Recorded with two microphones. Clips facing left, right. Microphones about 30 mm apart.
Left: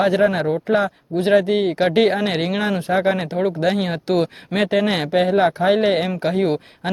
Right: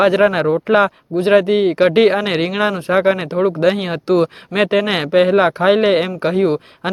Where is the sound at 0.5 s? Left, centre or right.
Right.